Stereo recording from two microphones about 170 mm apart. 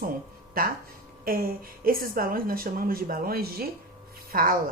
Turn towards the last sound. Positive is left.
turn(degrees=-55)  # may be behind; listen again after turning